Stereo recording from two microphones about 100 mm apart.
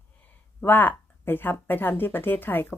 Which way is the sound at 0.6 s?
20° left (ahead or behind).